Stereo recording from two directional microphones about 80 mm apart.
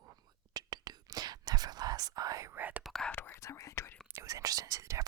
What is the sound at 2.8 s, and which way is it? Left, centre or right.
Whispering, centre.